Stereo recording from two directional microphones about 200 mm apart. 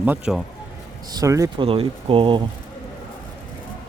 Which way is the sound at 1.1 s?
15° right (ahead or behind).